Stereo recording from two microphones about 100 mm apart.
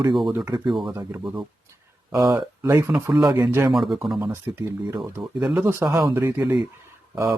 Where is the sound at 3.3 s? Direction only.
25° right (ahead or behind).